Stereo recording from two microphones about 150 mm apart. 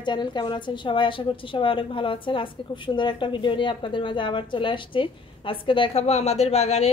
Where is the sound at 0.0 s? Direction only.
30° left (ahead or behind).